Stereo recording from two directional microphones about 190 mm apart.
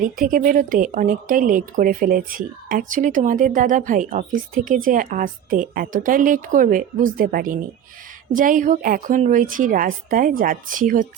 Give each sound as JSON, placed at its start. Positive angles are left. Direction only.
{"t": 0.0, "sound": "a woman's voice", "side_deg": -45}